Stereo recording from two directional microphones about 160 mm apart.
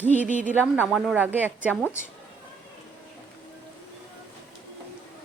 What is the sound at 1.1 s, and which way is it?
Speech, 10° right (ahead or behind).